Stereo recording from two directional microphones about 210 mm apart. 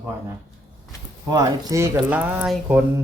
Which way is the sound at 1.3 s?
15° right (ahead or behind).